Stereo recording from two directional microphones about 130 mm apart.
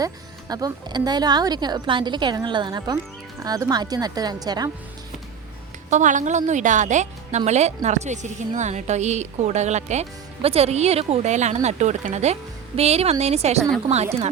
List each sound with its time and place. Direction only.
0.0 s speech: 30° right (ahead or behind)
5.9 s a woman's voice: 70° right (ahead or behind); by 14.3 s 55° right (ahead or behind)